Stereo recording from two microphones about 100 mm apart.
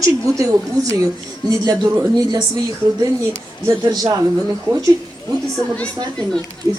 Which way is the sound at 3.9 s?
35° right (ahead or behind).